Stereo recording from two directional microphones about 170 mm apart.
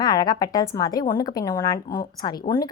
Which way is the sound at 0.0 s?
20° left (ahead or behind).